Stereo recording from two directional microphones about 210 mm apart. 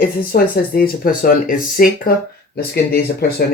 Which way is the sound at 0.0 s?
45° left (ahead or behind).